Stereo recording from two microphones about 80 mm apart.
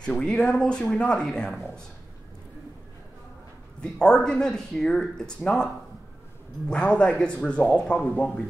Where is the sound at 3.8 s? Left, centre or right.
Centre.